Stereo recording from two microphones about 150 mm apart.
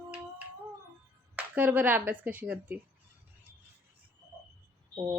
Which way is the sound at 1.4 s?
10° right (ahead or behind).